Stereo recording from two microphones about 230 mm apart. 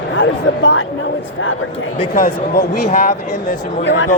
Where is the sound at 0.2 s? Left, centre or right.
Left.